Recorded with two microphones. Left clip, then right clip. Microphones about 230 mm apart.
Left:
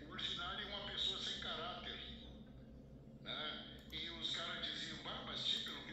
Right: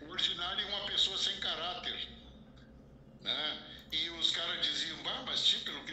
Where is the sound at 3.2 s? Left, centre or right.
Right.